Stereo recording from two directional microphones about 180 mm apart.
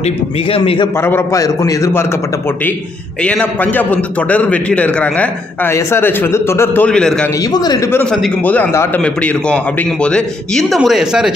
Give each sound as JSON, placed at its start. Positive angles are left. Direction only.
{"t": 0.5, "sound": "a man's voice", "side_deg": 30}
{"t": 1.0, "sound": "a man's voice", "side_deg": 15}
{"t": 3.3, "sound": "a man's voice", "side_deg": 10}
{"t": 7.5, "sound": "a man's voice", "side_deg": 20}
{"t": 8.0, "sound": "a man's voice", "side_deg": 5}